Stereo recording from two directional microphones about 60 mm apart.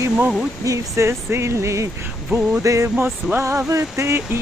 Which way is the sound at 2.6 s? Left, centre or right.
Right.